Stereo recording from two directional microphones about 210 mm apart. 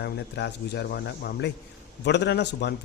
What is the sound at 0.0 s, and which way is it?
Speech, 55° left (ahead or behind).